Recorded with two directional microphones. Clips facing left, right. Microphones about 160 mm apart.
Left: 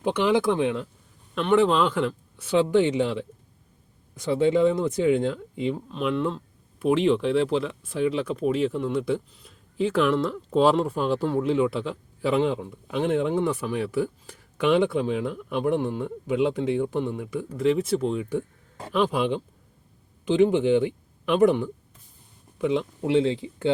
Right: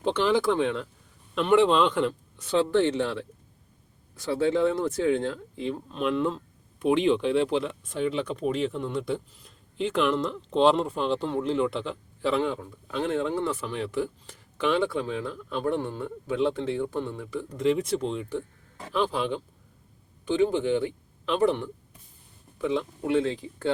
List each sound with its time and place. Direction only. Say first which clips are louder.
0.0 s speech: left 2 dB; 10° left (ahead or behind)
1.4 s speech: even; centre (ahead or behind); by 23.7 s 20° left (ahead or behind)